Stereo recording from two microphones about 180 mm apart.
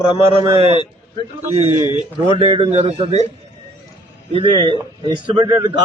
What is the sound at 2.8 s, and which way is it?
Speech, 35° right (ahead or behind).